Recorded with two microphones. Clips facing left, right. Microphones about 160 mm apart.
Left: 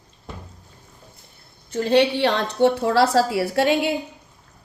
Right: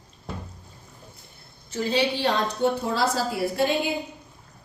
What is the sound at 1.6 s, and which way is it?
A woman's voice, 60° left (ahead or behind).